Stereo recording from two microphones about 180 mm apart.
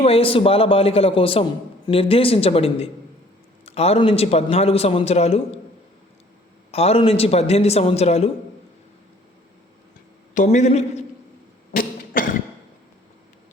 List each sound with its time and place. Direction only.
0.0 s a man's voice: 30° left (ahead or behind)
6.7 s a man's voice: 35° left (ahead or behind)
10.3 s a man's voice: 45° left (ahead or behind)
11.7 s cough: 50° left (ahead or behind)